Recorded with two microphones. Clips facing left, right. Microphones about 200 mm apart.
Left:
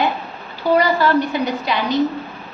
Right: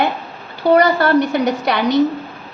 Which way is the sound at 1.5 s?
70° right (ahead or behind).